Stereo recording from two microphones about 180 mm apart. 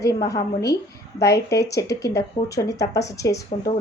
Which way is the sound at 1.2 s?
65° left (ahead or behind).